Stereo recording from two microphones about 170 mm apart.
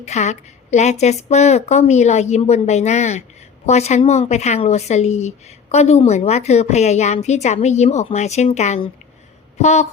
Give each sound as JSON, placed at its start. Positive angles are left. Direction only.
{"t": 0.0, "sound": "speech", "side_deg": 40}